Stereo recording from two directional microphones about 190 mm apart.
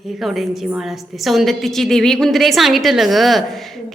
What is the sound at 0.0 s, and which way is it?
A woman's voice, centre (ahead or behind).